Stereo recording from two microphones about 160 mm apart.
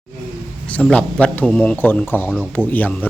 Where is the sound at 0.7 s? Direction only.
5° left (ahead or behind).